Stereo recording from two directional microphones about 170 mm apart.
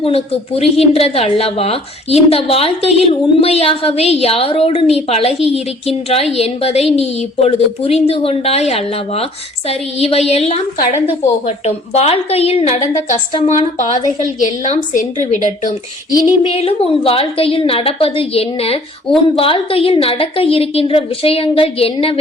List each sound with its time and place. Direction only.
0.0 s a woman's voice: 35° left (ahead or behind)
16.4 s a woman's voice: 35° left (ahead or behind)